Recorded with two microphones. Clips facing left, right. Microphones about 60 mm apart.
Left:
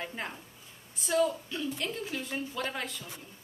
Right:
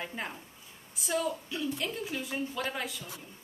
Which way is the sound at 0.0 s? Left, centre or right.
Centre.